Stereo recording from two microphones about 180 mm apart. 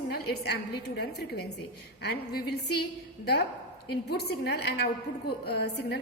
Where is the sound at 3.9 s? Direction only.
65° left (ahead or behind).